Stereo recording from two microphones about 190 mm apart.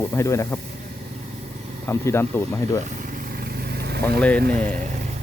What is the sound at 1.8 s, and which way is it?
Speech, 15° left (ahead or behind).